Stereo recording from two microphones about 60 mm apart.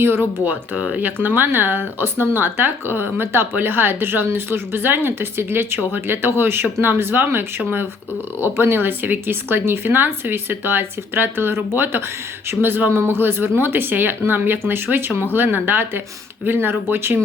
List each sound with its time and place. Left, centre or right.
0.0 s speech: right
8.5 s speech: right